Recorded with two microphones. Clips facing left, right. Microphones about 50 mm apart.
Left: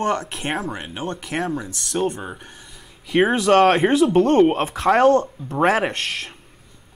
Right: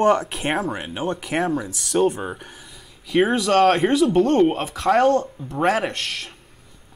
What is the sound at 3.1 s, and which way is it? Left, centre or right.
Speech, centre.